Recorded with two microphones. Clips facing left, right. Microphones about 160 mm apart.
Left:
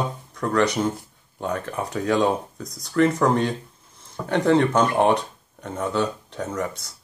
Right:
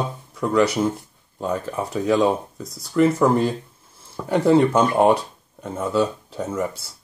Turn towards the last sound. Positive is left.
turn(degrees=-5)  # may be behind; listen again after turning